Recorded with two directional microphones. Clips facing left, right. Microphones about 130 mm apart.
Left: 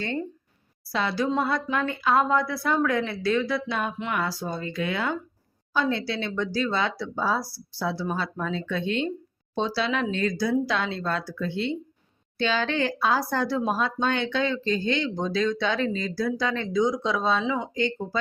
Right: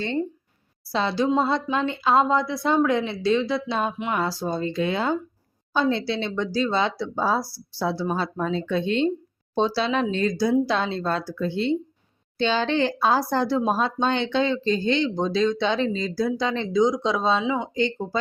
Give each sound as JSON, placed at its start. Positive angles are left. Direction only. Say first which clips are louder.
{"t": 0.0, "sound": "a woman's voice", "louder": "right 4 dB", "side_deg": -25}
{"t": 3.9, "sound": "a sound", "louder": "right 3 dB", "side_deg": -15}
{"t": 4.2, "sound": "speech", "louder": "right 4 dB", "side_deg": -30}